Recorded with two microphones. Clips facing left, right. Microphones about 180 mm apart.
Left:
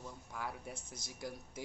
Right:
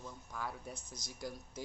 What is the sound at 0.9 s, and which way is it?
Speech, 25° left (ahead or behind).